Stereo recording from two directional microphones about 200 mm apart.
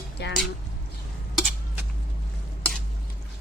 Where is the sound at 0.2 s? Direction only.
60° left (ahead or behind).